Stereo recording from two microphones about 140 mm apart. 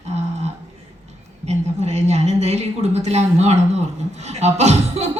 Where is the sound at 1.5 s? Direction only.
50° right (ahead or behind).